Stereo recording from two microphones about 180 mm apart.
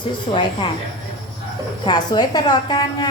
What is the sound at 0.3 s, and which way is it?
Speech, 35° left (ahead or behind).